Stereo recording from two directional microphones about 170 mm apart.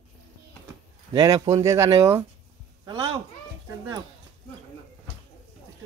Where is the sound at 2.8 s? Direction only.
25° right (ahead or behind).